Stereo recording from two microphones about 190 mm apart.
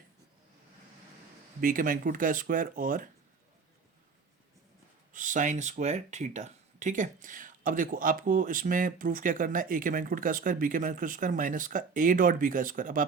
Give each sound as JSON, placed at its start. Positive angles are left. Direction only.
{"t": 1.6, "sound": "speech", "side_deg": -45}
{"t": 5.1, "sound": "speech", "side_deg": -40}